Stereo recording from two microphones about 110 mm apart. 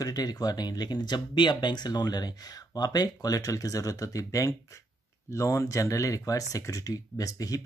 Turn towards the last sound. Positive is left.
turn(degrees=30)  # may be behind; listen again after turning